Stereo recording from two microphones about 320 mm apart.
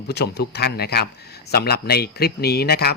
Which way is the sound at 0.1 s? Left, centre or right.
Left.